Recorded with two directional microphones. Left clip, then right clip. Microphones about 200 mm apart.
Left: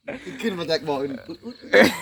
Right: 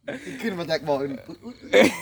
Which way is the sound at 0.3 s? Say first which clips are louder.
Left 3 dB; 40° right (ahead or behind).